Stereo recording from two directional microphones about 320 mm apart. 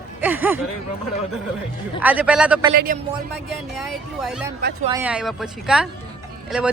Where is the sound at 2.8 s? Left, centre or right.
Right.